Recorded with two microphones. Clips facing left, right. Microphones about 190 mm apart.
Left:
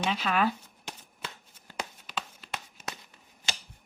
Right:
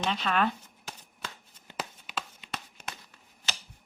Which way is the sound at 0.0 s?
5° left (ahead or behind).